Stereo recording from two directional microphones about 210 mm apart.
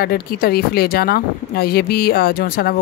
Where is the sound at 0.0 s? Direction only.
50° left (ahead or behind).